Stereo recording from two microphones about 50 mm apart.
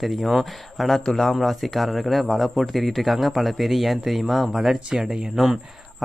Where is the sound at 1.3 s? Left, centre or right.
Centre.